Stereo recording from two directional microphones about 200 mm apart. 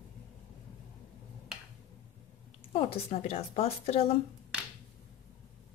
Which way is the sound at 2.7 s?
35° left (ahead or behind).